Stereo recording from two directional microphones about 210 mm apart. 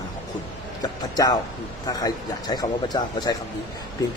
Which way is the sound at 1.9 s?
20° left (ahead or behind).